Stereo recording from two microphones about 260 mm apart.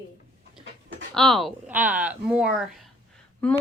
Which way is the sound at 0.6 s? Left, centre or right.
Right.